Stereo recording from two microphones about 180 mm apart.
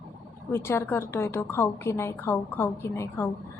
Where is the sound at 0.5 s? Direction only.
15° left (ahead or behind).